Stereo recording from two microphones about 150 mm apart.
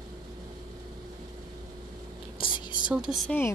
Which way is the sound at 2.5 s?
30° left (ahead or behind).